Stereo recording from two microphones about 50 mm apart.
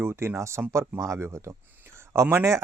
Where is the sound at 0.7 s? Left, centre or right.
Right.